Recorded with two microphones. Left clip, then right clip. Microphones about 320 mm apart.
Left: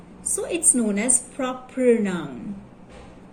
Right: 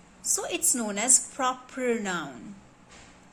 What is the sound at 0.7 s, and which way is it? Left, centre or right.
A woman's voice, right.